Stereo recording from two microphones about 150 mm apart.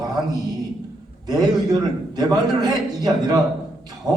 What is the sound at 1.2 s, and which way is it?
A man's voice, 25° right (ahead or behind).